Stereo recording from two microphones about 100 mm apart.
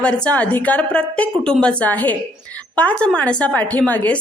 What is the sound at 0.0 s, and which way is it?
A woman's voice, 10° left (ahead or behind).